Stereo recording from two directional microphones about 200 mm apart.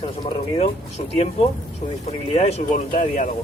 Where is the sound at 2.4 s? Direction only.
30° left (ahead or behind).